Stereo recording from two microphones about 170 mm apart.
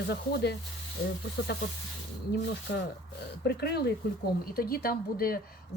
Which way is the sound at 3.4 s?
70° left (ahead or behind).